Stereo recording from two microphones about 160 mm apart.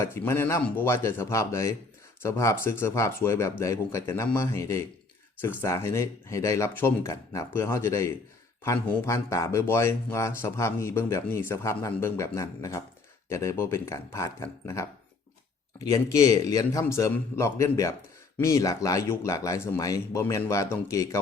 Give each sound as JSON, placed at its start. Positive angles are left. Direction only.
{"t": 0.0, "sound": "speech", "side_deg": 15}